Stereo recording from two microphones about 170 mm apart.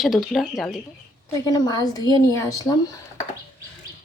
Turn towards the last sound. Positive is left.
turn(degrees=25)  # may be behind; listen again after turning